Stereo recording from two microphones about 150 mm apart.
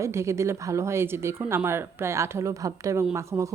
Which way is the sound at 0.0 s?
20° right (ahead or behind).